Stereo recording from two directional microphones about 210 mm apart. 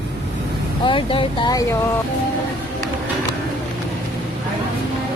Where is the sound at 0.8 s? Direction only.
25° left (ahead or behind).